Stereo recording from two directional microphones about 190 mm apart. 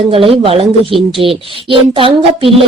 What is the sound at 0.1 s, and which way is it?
Speech, 30° right (ahead or behind).